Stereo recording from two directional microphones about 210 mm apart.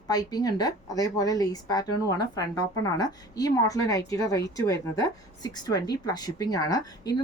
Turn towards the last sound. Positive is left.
turn(degrees=20)  # may be behind; listen again after turning